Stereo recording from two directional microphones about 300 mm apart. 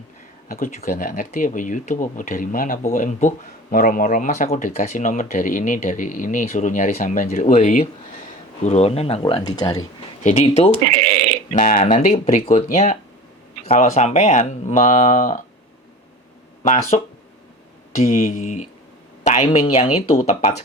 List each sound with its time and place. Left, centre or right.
0.4 s speech: left
16.6 s speech: left